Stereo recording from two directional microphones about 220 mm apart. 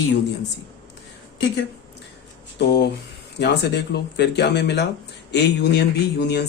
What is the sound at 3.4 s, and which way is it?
Speech, 50° left (ahead or behind).